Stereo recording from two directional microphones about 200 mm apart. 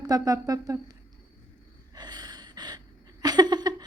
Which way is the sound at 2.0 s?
20° right (ahead or behind).